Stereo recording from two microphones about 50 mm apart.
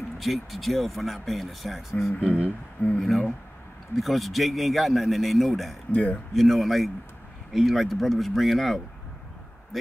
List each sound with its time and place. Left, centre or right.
0.2 s speech: centre
2.2 s a sound: right
3.0 s speech: centre
5.9 s speech: left
6.3 s speech: centre